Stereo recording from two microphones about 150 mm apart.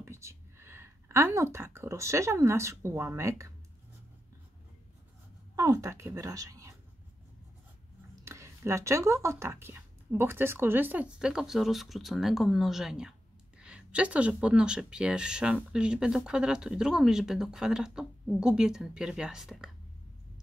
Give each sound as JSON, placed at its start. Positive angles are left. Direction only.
{"t": 0.0, "sound": "speech", "side_deg": -20}
{"t": 5.6, "sound": "speech", "side_deg": -20}
{"t": 8.2, "sound": "speech", "side_deg": -20}